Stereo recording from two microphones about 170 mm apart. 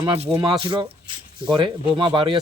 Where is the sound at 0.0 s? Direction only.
30° right (ahead or behind).